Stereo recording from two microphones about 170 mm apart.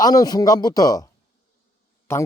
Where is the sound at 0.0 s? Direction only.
20° left (ahead or behind).